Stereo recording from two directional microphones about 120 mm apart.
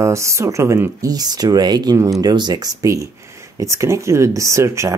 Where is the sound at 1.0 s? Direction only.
35° right (ahead or behind).